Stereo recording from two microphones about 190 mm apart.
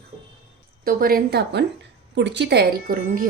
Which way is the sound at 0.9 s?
50° right (ahead or behind).